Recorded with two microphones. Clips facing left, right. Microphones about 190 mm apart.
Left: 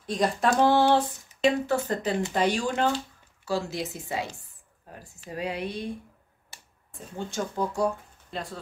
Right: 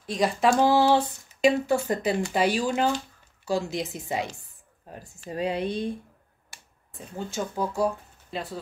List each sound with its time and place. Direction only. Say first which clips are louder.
0.0 s speech: right 2 dB; centre (ahead or behind)
3.4 s speech: right 2 dB; 20° right (ahead or behind)
7.2 s speech: even; 5° right (ahead or behind)